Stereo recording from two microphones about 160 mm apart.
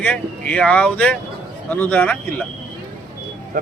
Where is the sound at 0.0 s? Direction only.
10° left (ahead or behind).